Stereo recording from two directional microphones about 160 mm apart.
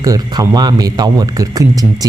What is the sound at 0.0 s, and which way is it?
A man's voice, 25° right (ahead or behind).